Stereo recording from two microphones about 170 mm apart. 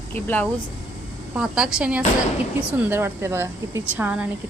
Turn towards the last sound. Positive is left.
turn(degrees=-10)  # may be behind; listen again after turning